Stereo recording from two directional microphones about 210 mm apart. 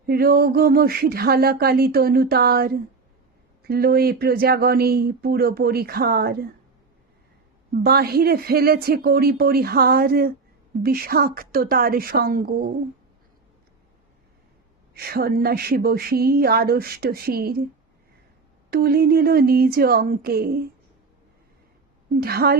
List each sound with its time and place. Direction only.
0.0 s speech: 45° right (ahead or behind)
7.8 s speech: 45° right (ahead or behind)
14.9 s speech: 50° right (ahead or behind)
18.7 s speech: 45° right (ahead or behind)
22.2 s speech: 45° right (ahead or behind)